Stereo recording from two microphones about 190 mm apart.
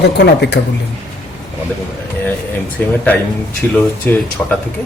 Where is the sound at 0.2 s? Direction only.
60° left (ahead or behind).